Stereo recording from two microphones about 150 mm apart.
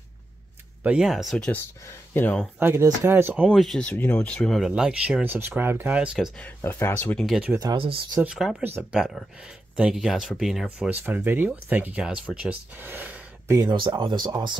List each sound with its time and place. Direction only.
0.8 s speech: 5° right (ahead or behind); by 2.4 s 10° left (ahead or behind)
2.6 s speech: 20° right (ahead or behind)
3.4 s speech: centre (ahead or behind)
6.1 s speech: 5° left (ahead or behind)
7.2 s speech: 5° right (ahead or behind)
7.5 s speech: 25° right (ahead or behind)
7.8 s speech: 35° right (ahead or behind)
8.2 s speech: 5° right (ahead or behind)
10.9 s speech: 10° right (ahead or behind)
13.6 s speech: 30° right (ahead or behind)